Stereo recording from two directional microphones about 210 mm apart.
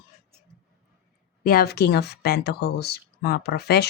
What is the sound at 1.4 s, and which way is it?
A woman's voice, 45° left (ahead or behind).